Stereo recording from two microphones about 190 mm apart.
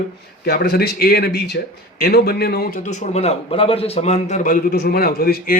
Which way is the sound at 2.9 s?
35° left (ahead or behind).